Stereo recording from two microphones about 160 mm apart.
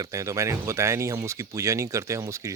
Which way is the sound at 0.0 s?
20° right (ahead or behind).